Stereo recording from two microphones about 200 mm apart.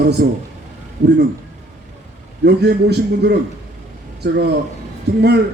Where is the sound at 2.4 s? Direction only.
55° right (ahead or behind).